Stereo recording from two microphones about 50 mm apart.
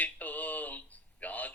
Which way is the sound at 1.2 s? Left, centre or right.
Left.